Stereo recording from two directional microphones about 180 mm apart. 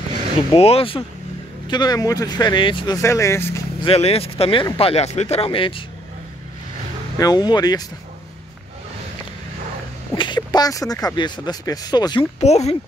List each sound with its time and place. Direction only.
0.5 s speech: 35° left (ahead or behind); by 3.6 s 15° left (ahead or behind)
3.8 s speech: 35° left (ahead or behind)
7.2 s speech: 20° left (ahead or behind)
10.1 s speech: 25° left (ahead or behind)
12.4 s speech: 35° left (ahead or behind)